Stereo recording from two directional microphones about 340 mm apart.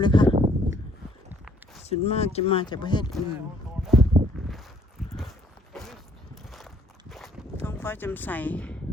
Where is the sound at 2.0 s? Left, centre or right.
Centre.